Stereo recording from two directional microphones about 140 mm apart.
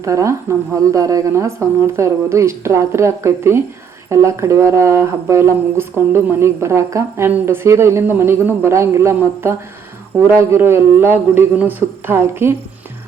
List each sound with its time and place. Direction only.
0.0 s a man's voice: 20° right (ahead or behind)